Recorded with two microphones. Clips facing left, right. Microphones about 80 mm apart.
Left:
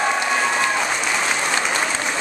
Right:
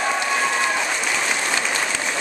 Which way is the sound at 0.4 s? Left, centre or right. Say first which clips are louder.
Left 1 dB; centre.